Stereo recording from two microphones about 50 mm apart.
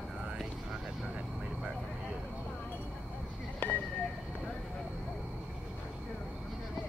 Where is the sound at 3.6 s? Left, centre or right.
Left.